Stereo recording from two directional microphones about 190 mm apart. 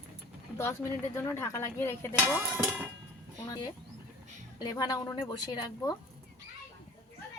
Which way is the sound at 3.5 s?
20° left (ahead or behind).